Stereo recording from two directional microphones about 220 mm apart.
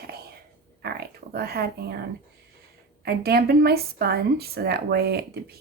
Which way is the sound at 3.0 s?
45° right (ahead or behind).